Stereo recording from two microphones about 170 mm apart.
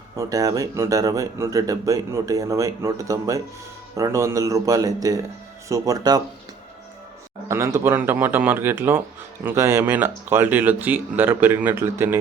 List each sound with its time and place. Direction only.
0.2 s speech: 20° right (ahead or behind)
7.4 s speech: 15° right (ahead or behind)